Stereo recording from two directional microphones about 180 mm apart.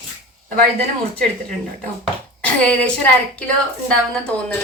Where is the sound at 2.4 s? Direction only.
5° left (ahead or behind).